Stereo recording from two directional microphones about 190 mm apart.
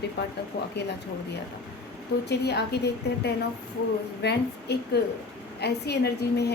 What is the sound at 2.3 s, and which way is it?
A woman's voice, 60° left (ahead or behind).